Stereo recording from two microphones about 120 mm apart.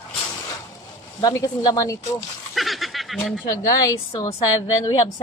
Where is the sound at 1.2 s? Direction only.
30° left (ahead or behind).